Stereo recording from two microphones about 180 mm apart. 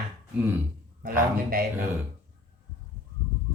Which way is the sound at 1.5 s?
55° right (ahead or behind).